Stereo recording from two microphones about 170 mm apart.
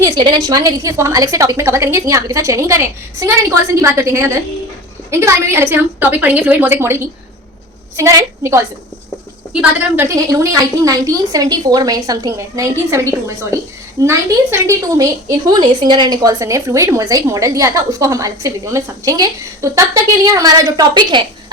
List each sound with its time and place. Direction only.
0.0 s a woman's voice: 25° right (ahead or behind)